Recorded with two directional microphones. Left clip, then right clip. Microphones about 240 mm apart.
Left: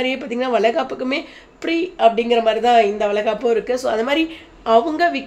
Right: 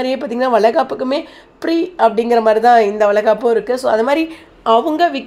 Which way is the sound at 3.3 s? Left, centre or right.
Centre.